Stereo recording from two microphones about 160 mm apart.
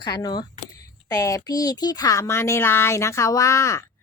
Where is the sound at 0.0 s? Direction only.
25° left (ahead or behind).